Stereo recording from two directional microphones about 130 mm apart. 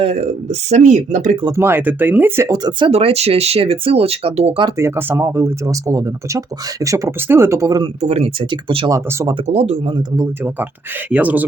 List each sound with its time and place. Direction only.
0.0 s speech: 55° right (ahead or behind)
1.5 s speech: 15° right (ahead or behind)
2.5 s speech: 35° right (ahead or behind)
2.9 s speech: 55° right (ahead or behind)
4.8 s speech: 20° right (ahead or behind)
8.0 s speech: 55° right (ahead or behind)
8.4 s speech: 40° right (ahead or behind)
8.9 s speech: 25° right (ahead or behind)
9.5 s speech: 55° right (ahead or behind)
10.2 s speech: 15° right (ahead or behind)